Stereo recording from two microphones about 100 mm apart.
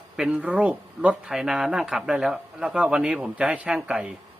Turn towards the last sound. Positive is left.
turn(degrees=-10)  # may be behind; listen again after turning